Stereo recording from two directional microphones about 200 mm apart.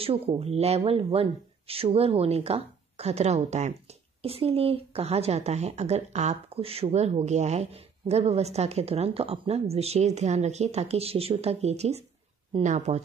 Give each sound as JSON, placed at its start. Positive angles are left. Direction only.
{"t": 0.0, "sound": "speech", "side_deg": -30}